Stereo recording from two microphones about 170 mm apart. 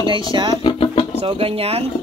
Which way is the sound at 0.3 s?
25° right (ahead or behind).